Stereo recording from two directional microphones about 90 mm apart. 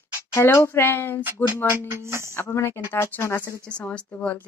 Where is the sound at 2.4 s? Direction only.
30° left (ahead or behind).